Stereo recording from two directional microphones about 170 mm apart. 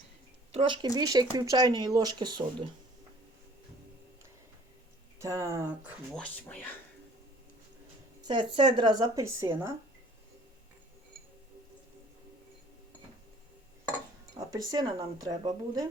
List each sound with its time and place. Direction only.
0.5 s speech: 30° right (ahead or behind)
5.2 s speech: 20° right (ahead or behind)
6.1 s speech: 5° left (ahead or behind)
8.3 s speech: 30° right (ahead or behind); by 9.7 s 15° right (ahead or behind)
14.3 s speech: 20° right (ahead or behind)